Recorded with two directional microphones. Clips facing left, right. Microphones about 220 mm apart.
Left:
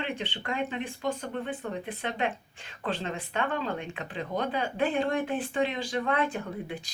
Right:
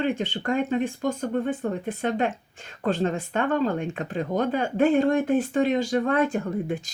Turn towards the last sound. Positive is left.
turn(degrees=-45)  # may be behind; listen again after turning